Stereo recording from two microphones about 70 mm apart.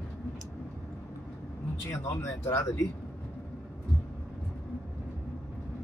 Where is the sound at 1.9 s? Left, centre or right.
Left.